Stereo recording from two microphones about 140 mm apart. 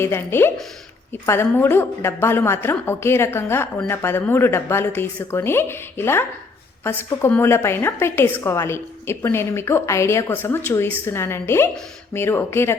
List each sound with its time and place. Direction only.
0.0 s a woman's voice: 15° left (ahead or behind)